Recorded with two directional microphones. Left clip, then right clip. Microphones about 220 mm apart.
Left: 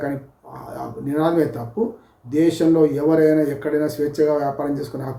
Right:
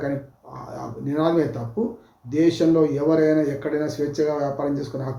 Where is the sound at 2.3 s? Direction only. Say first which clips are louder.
Left 2 dB; 10° left (ahead or behind).